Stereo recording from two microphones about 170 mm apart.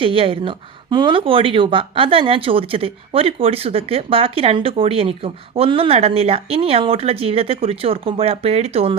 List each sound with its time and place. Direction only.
0.0 s speech: 35° right (ahead or behind)